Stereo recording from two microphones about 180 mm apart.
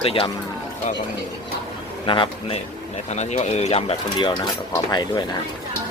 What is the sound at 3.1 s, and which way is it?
A man's voice, 40° left (ahead or behind).